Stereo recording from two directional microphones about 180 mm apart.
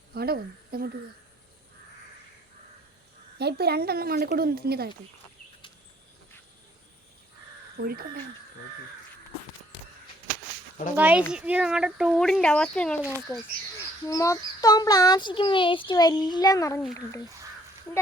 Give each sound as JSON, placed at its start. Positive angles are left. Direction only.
{"t": 0.1, "sound": "speech", "side_deg": -60}
{"t": 3.3, "sound": "speech", "side_deg": -65}
{"t": 7.8, "sound": "speech", "side_deg": -55}
{"t": 10.9, "sound": "speech", "side_deg": -10}
{"t": 13.3, "sound": "speech", "side_deg": 15}
{"t": 17.9, "sound": "speech", "side_deg": 10}